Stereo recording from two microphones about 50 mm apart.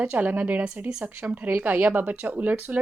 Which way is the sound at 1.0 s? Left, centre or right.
Right.